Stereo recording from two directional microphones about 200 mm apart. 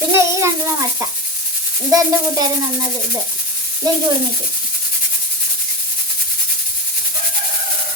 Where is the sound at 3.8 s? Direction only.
20° right (ahead or behind).